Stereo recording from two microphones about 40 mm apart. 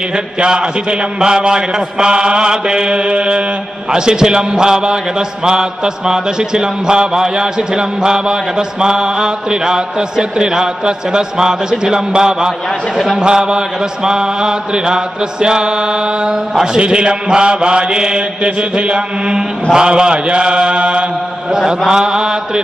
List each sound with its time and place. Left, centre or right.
0.1 s mantra: right
21.5 s chant: centre